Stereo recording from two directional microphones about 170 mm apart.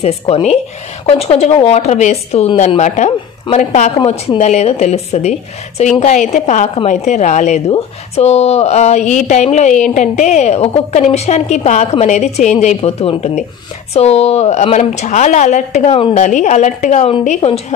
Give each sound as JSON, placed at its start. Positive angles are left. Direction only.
{"t": 1.0, "sound": "a woman's voice", "side_deg": 35}